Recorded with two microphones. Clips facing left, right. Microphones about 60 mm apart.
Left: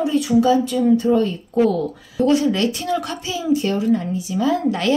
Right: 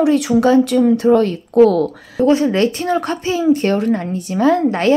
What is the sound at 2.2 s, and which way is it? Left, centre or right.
Speech, right.